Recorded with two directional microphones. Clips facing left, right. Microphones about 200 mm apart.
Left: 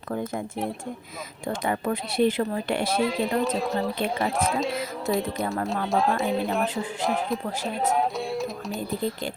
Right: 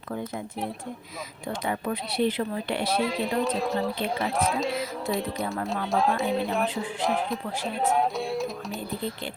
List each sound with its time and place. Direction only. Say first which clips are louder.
1.6 s speech: left 2 dB; 50° left (ahead or behind)
3.0 s speech: left 2 dB; centre (ahead or behind)